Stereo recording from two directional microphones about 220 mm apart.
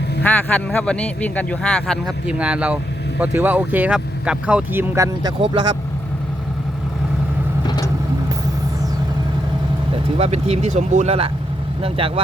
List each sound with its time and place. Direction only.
0.2 s speech: 5° left (ahead or behind); by 5.3 s 15° right (ahead or behind)
9.9 s speech: 30° right (ahead or behind)